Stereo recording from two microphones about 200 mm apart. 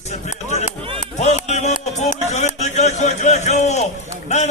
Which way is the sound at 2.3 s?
35° left (ahead or behind).